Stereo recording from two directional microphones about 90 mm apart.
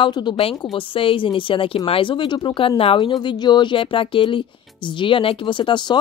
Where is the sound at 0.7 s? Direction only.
75° left (ahead or behind).